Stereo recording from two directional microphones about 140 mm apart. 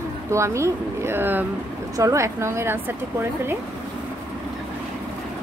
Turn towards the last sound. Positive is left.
turn(degrees=-15)  # may be behind; listen again after turning